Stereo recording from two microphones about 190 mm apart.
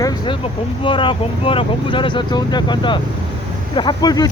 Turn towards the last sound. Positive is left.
turn(degrees=20)  # may be behind; listen again after turning